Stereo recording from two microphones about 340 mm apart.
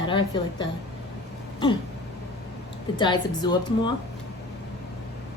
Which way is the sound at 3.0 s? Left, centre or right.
Centre.